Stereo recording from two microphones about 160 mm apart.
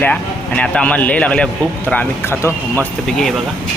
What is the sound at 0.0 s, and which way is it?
A man's voice, 10° left (ahead or behind).